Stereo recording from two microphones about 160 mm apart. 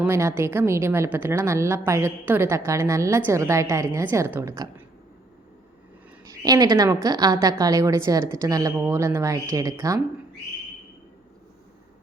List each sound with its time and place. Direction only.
0.0 s a woman's voice: 15° right (ahead or behind)
6.2 s a woman's voice: 25° right (ahead or behind)